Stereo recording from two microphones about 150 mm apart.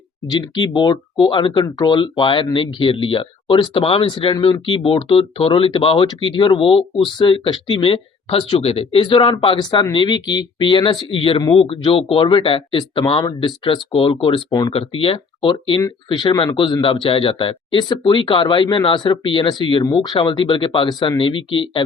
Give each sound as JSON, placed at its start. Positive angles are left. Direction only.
{"t": 0.3, "sound": "speech", "side_deg": 30}